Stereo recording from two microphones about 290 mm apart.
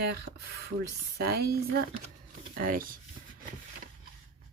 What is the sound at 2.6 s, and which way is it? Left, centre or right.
Speech, right.